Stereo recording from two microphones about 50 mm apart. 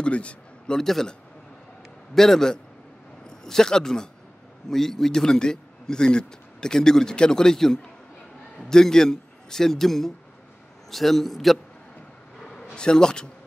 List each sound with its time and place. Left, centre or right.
0.0 s speech: left
0.7 s a man's voice: centre
2.1 s a man's voice: centre
12.4 s a sound: centre
12.7 s a man's voice: centre